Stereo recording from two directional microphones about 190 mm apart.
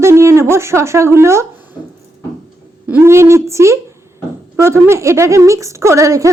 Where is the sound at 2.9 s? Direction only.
15° right (ahead or behind).